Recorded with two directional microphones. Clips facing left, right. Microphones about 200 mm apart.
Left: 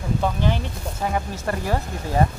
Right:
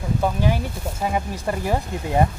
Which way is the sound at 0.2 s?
10° right (ahead or behind).